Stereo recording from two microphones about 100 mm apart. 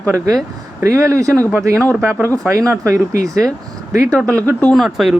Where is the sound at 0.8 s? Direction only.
30° right (ahead or behind).